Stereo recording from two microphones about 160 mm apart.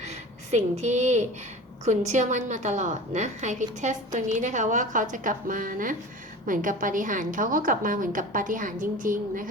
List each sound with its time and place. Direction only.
0.0 s a woman's voice: 45° right (ahead or behind)